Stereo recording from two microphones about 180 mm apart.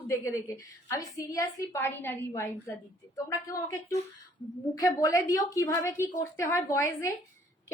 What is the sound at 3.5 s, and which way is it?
Speech, 20° left (ahead or behind).